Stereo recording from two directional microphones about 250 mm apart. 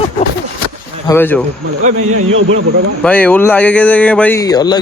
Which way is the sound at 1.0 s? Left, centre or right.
Centre.